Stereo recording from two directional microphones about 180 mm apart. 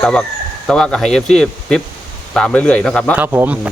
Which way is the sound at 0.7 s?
5° left (ahead or behind).